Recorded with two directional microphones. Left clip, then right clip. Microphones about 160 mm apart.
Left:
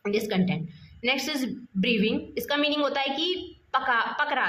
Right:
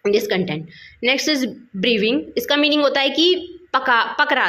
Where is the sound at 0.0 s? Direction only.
15° right (ahead or behind).